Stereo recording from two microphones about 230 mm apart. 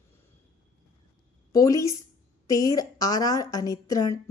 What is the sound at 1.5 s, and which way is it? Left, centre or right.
A woman's voice, centre.